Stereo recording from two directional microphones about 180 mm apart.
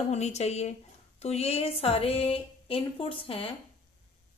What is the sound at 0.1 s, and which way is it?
A woman's voice, 40° left (ahead or behind).